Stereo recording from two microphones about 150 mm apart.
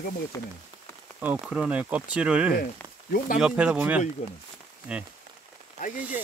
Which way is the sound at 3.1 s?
65° left (ahead or behind).